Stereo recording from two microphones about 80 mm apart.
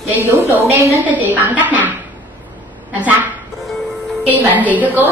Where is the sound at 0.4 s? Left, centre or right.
Right.